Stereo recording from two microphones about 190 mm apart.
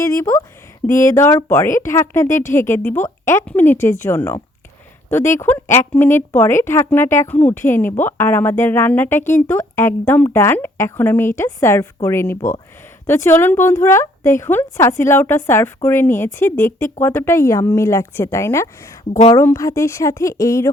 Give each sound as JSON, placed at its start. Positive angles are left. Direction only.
{"t": 0.0, "sound": "speech", "side_deg": 15}